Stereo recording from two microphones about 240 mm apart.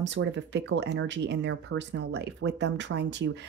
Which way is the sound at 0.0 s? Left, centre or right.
Right.